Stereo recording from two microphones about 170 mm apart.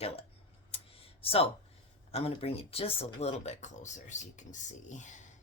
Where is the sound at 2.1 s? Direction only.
35° left (ahead or behind).